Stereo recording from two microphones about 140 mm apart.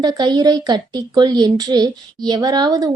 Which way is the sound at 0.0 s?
30° right (ahead or behind).